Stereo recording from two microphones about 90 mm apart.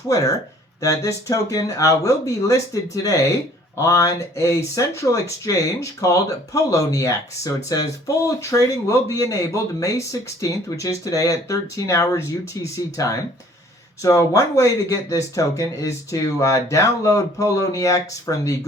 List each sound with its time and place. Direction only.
0.1 s speech: 40° left (ahead or behind)